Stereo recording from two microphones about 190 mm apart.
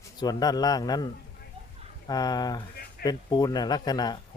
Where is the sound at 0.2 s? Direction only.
20° left (ahead or behind).